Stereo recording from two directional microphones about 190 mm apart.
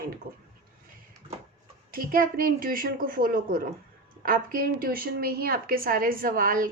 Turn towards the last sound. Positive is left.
turn(degrees=-50)  # may be behind; listen again after turning